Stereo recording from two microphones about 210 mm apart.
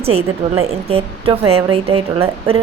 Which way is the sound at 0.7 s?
30° right (ahead or behind).